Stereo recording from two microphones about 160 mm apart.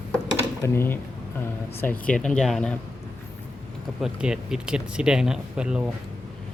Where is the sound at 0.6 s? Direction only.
15° left (ahead or behind).